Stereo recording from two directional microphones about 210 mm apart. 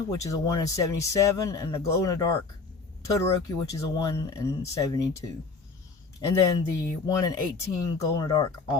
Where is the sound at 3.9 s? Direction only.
20° left (ahead or behind).